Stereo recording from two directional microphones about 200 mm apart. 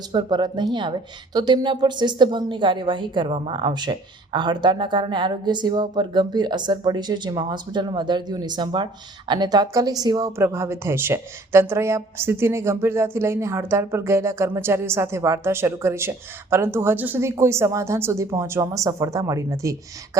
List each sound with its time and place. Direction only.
0.1 s speech: 20° right (ahead or behind)